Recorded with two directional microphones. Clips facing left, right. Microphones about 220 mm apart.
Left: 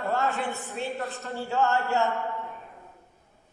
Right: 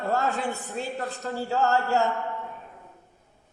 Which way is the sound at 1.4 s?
35° right (ahead or behind).